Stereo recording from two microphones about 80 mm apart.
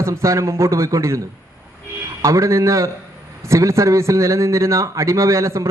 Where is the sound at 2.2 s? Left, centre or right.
Right.